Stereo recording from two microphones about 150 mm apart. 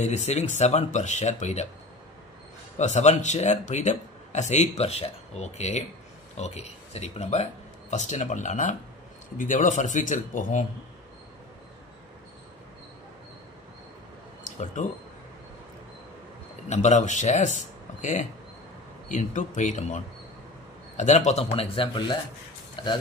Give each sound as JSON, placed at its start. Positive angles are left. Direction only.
{"t": 0.0, "sound": "speech", "side_deg": 50}
{"t": 2.8, "sound": "speech", "side_deg": 50}
{"t": 14.8, "sound": "speech", "side_deg": 55}
{"t": 16.6, "sound": "speech", "side_deg": 50}
{"t": 19.0, "sound": "speech", "side_deg": 55}